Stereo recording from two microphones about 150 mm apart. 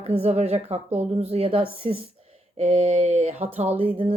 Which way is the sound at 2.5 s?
50° right (ahead or behind).